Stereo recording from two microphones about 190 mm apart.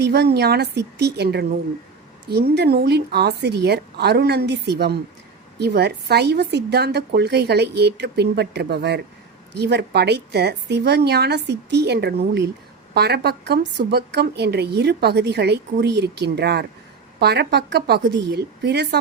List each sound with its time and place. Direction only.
0.0 s a woman's voice: 60° right (ahead or behind)